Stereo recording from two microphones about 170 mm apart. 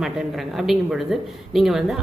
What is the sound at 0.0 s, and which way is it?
Speech, centre (ahead or behind).